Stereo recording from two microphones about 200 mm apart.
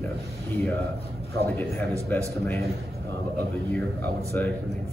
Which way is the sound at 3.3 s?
10° left (ahead or behind).